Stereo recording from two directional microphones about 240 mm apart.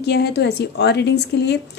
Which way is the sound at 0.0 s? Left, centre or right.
Left.